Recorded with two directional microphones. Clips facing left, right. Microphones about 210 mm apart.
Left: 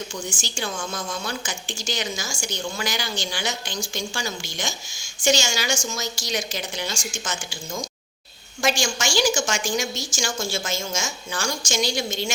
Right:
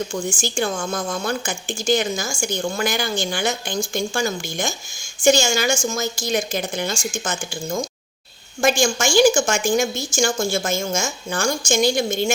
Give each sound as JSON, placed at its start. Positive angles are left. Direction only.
{"t": 0.1, "sound": "a woman's voice", "side_deg": -50}